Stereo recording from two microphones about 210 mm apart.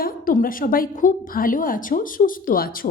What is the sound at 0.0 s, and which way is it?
A woman's voice, 40° left (ahead or behind).